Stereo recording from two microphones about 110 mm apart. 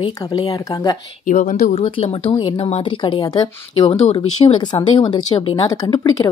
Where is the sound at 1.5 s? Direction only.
65° left (ahead or behind); by 3.9 s 40° left (ahead or behind).